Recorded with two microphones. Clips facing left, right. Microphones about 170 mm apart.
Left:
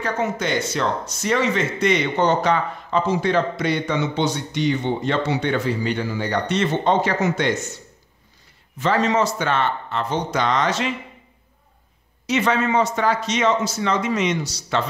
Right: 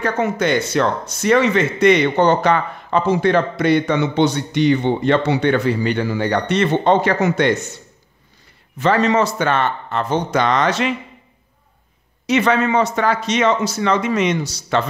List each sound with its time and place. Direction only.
0.0 s speech: 60° right (ahead or behind)
8.7 s speech: 65° right (ahead or behind)
12.3 s speech: 65° right (ahead or behind)